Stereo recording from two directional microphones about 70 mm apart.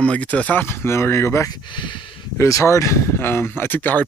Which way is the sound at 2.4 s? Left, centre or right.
Left.